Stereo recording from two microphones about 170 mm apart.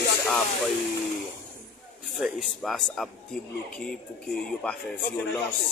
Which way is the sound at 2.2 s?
Centre (ahead or behind).